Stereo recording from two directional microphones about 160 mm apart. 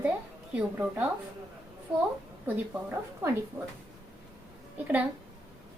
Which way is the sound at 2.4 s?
10° right (ahead or behind).